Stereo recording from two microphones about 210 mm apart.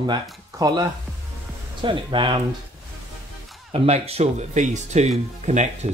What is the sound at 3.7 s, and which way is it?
Speech, 30° right (ahead or behind).